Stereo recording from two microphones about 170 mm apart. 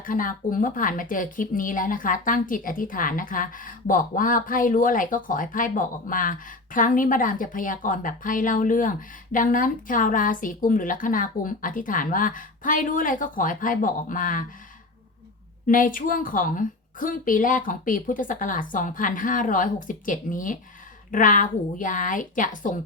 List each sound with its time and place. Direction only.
0.0 s speech: 55° left (ahead or behind)
15.6 s speech: 50° left (ahead or behind)